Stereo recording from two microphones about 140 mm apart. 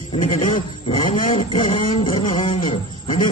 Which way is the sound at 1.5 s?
70° left (ahead or behind).